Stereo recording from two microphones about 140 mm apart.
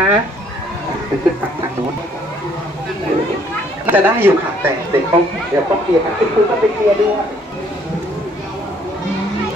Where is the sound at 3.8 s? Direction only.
15° right (ahead or behind).